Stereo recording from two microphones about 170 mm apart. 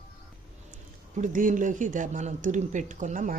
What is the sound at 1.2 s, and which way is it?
Speech, 50° right (ahead or behind).